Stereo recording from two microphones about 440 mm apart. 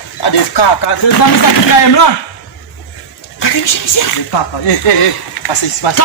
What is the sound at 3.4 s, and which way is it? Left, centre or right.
Speech, left.